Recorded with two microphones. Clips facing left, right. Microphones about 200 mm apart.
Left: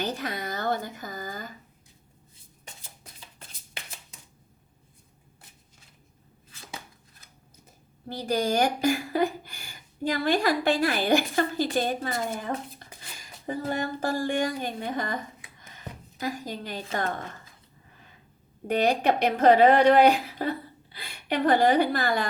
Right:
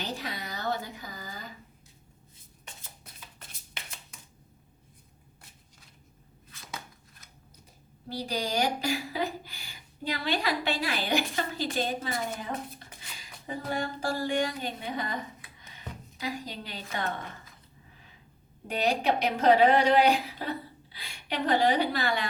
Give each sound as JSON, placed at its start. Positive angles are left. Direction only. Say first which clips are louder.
{"t": 0.0, "sound": "a sound", "louder": "left 5 dB", "side_deg": 50}
{"t": 8.1, "sound": "a woman's voice", "louder": "left 5 dB", "side_deg": 50}
{"t": 15.6, "sound": "music", "louder": "left 1 dB", "side_deg": 50}
{"t": 18.7, "sound": "a woman's voice", "louder": "left 4 dB", "side_deg": 55}